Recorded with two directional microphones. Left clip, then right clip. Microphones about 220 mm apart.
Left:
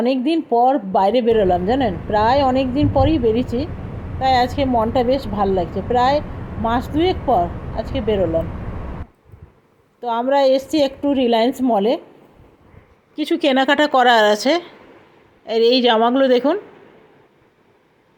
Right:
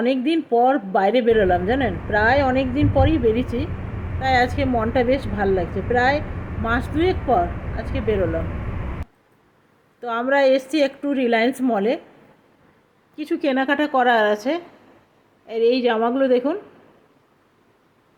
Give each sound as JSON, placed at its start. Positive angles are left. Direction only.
{"t": 0.0, "sound": "a woman's voice", "side_deg": 10}
{"t": 10.0, "sound": "a woman's voice", "side_deg": 10}
{"t": 13.1, "sound": "a woman's voice", "side_deg": 10}